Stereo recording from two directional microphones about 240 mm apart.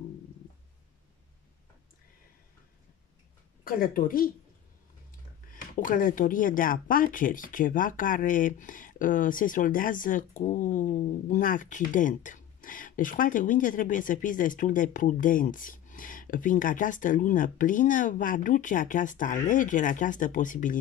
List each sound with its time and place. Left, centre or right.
3.6 s speech: left
5.5 s speech: left